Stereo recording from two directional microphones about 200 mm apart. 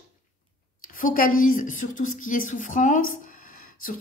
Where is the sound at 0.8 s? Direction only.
45° left (ahead or behind).